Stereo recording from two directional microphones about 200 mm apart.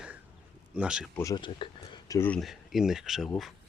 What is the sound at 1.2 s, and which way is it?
Speech, 20° left (ahead or behind).